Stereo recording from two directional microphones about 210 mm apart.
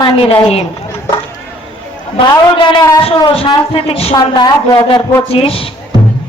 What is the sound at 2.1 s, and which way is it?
A woman's voice, 25° left (ahead or behind).